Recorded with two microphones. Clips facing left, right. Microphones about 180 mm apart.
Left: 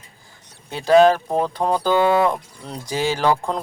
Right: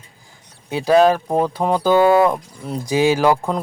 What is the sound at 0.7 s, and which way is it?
Speech, 10° right (ahead or behind).